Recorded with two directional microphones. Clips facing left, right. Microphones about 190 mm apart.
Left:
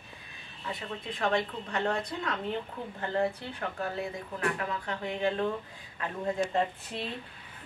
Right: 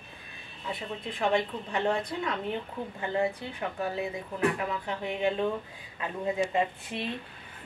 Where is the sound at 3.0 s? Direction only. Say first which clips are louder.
Right 1 dB; 10° right (ahead or behind).